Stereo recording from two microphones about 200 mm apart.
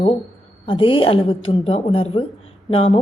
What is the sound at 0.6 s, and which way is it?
A woman's voice, 25° left (ahead or behind).